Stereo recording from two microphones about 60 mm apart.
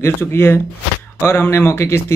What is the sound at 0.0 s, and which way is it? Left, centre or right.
Speech, left.